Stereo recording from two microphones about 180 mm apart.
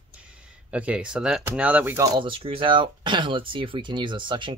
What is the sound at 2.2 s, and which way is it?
Speech, 30° right (ahead or behind).